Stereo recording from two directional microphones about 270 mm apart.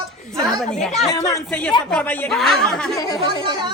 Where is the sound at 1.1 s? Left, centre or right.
Centre.